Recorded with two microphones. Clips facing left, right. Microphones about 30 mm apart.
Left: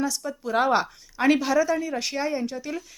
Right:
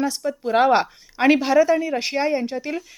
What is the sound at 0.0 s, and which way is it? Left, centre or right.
A woman's voice, right.